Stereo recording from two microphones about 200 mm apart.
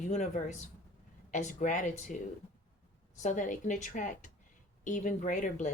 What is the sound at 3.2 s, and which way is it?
Speech, 40° left (ahead or behind).